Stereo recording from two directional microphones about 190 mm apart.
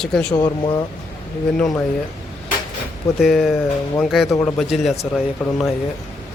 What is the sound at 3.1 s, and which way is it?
Speech, centre (ahead or behind).